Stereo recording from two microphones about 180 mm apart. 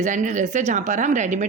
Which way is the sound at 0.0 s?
45° right (ahead or behind).